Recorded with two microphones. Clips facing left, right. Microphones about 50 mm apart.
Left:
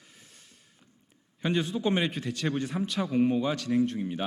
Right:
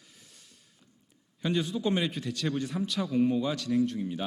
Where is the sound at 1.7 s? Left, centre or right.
Left.